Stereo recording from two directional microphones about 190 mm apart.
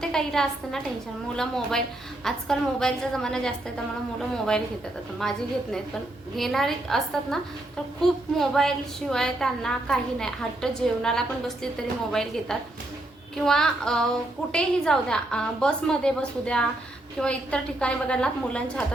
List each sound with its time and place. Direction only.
0.0 s a woman's voice: 5° left (ahead or behind)